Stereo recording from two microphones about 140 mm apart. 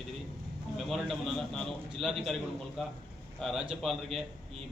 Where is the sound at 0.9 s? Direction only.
Centre (ahead or behind).